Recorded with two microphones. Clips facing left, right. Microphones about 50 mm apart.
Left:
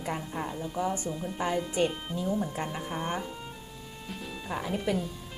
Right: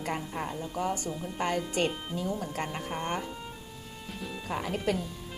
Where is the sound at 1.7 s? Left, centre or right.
Right.